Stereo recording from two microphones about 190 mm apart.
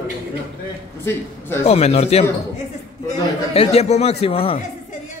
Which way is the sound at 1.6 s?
35° left (ahead or behind).